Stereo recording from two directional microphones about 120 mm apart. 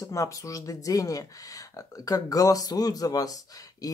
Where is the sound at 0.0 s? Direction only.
25° left (ahead or behind).